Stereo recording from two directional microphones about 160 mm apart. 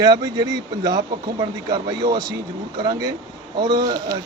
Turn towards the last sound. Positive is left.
turn(degrees=-25)  # may be behind; listen again after turning